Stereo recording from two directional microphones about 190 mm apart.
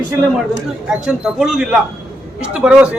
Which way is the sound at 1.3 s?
5° right (ahead or behind).